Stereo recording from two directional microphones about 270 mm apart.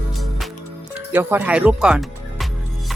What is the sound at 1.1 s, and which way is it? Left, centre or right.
Speech, centre.